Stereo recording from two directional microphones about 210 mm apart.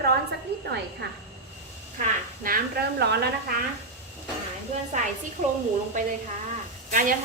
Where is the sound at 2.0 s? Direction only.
40° right (ahead or behind).